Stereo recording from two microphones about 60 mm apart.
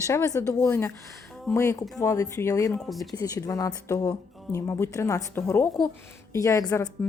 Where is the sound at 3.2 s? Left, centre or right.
Left.